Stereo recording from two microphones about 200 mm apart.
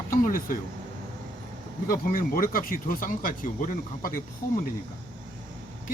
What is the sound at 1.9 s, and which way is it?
Speech, 45° left (ahead or behind).